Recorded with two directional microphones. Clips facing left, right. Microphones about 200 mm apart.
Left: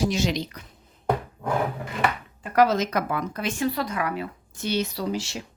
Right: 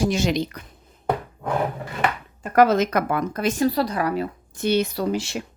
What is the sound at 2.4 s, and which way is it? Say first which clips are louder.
Speech: right 4 dB; 50° right (ahead or behind).